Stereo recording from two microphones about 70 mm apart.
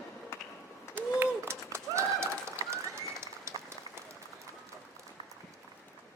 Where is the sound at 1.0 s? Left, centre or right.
Right.